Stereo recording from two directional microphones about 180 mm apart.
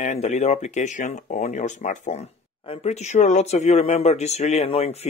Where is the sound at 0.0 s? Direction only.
40° left (ahead or behind).